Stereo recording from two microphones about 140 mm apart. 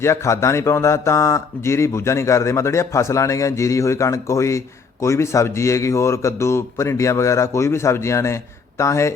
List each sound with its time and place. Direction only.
0.0 s speech: 20° left (ahead or behind)